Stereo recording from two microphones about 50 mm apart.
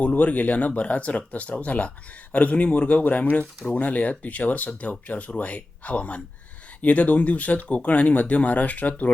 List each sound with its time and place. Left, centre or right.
0.0 s speech: left